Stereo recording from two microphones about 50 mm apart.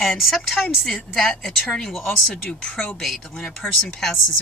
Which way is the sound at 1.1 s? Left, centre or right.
Centre.